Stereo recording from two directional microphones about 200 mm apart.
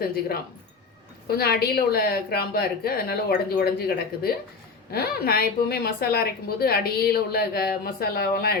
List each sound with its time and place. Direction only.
1.4 s a woman's voice: 50° left (ahead or behind)